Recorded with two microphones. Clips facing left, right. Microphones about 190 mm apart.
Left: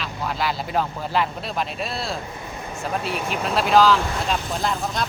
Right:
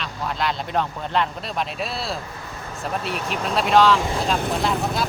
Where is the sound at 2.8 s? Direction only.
Centre (ahead or behind).